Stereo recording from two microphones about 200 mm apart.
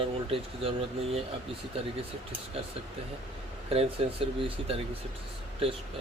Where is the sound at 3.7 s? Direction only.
30° right (ahead or behind).